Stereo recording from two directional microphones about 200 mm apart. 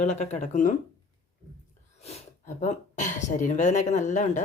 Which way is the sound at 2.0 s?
35° left (ahead or behind).